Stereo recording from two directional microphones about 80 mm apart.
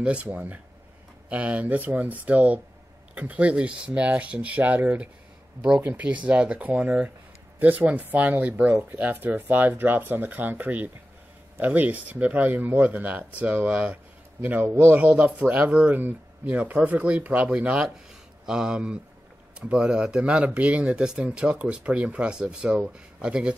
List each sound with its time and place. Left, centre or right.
0.0 s speech: centre